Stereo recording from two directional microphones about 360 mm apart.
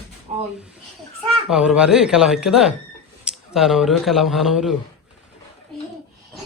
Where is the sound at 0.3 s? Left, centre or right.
Centre.